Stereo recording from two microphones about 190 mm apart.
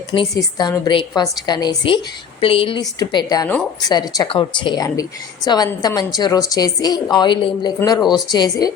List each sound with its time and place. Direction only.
0.1 s a woman's voice: 25° left (ahead or behind)
7.8 s a woman's voice: 15° left (ahead or behind)